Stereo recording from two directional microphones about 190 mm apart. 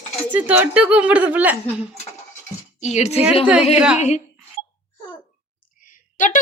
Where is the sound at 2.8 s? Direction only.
35° left (ahead or behind).